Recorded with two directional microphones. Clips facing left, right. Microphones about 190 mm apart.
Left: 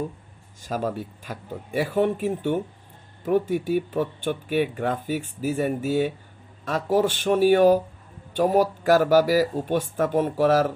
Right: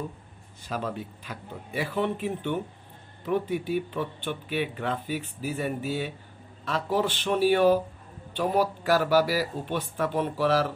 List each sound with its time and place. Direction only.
0.6 s speech: 45° left (ahead or behind)